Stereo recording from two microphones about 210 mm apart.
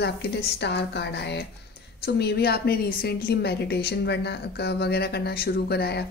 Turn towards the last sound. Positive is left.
turn(degrees=50)  # may be behind; listen again after turning